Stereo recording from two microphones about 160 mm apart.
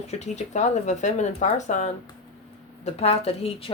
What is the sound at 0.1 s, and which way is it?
A woman's voice, 45° left (ahead or behind).